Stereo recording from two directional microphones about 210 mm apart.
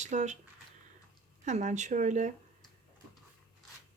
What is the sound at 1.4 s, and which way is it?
Speech, 35° right (ahead or behind).